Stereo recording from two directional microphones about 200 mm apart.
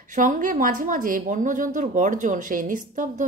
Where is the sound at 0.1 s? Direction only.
40° right (ahead or behind).